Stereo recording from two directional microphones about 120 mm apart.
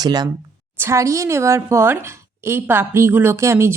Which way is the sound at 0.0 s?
35° right (ahead or behind).